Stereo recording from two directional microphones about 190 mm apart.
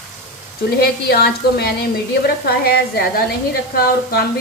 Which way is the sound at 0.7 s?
55° left (ahead or behind).